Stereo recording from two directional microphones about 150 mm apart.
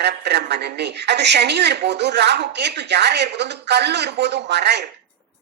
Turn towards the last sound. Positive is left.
turn(degrees=-90)